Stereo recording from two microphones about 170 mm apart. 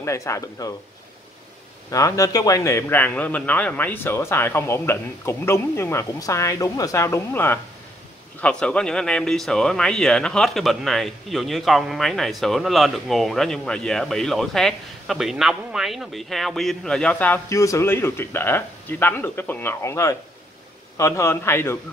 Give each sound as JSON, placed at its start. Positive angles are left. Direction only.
{"t": 0.0, "sound": "a man's voice", "side_deg": 15}
{"t": 1.9, "sound": "a man's voice", "side_deg": 20}